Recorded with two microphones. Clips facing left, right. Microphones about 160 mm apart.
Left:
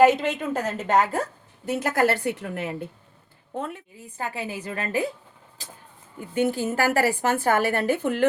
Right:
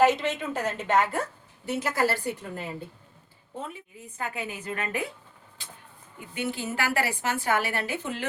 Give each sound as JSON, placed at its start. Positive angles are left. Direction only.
{"t": 0.0, "sound": "a woman's voice", "side_deg": 50}
{"t": 3.5, "sound": "speech", "side_deg": 70}
{"t": 4.2, "sound": "a woman's voice", "side_deg": 35}